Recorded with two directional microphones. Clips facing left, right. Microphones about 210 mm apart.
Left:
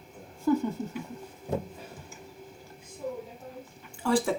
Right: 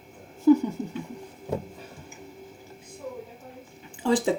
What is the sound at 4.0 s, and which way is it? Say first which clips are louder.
Speech: right 3 dB; 20° right (ahead or behind).